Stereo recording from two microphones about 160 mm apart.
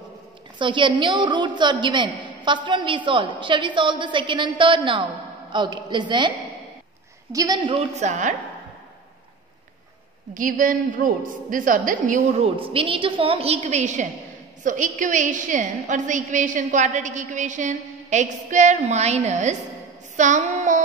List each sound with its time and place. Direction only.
0.6 s a woman's voice: 30° right (ahead or behind)
7.3 s a woman's voice: 25° right (ahead or behind)
8.0 s a woman's voice: 50° right (ahead or behind)
10.3 s a woman's voice: 55° right (ahead or behind)
20.2 s child singing: 50° right (ahead or behind)